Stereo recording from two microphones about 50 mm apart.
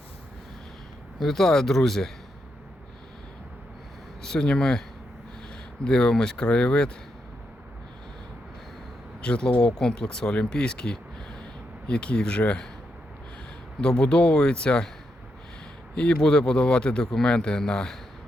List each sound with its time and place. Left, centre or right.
1.2 s speech: centre
4.2 s speech: centre
5.8 s speech: centre
9.2 s speech: centre
13.8 s speech: centre
16.0 s speech: centre